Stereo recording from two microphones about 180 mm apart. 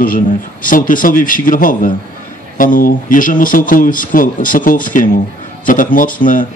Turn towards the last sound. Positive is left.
turn(degrees=50)  # may be behind; listen again after turning